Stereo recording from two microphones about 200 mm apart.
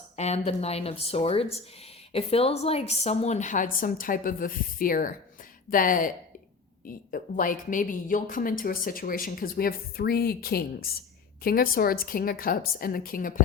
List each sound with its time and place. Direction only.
0.2 s a woman's voice: 35° left (ahead or behind)